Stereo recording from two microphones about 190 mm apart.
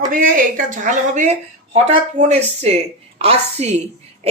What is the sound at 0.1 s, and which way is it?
Speech, 45° right (ahead or behind).